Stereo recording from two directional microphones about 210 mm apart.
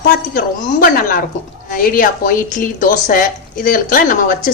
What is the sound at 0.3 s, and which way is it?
Speech, 45° left (ahead or behind).